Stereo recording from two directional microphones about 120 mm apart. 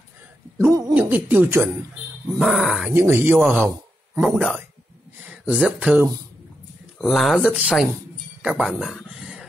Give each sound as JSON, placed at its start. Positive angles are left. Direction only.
{"t": 0.9, "sound": "speech", "side_deg": -15}
{"t": 2.3, "sound": "speech", "side_deg": 0}
{"t": 2.9, "sound": "speech", "side_deg": -20}
{"t": 8.4, "sound": "a sound", "side_deg": -5}